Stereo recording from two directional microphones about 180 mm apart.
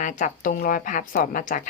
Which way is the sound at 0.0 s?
45° left (ahead or behind).